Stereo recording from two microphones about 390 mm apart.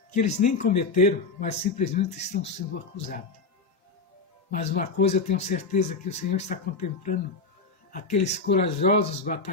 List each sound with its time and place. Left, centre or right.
0.1 s speech: centre
4.5 s speech: centre